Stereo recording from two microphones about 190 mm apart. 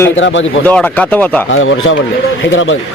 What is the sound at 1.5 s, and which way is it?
Speech, 90° left.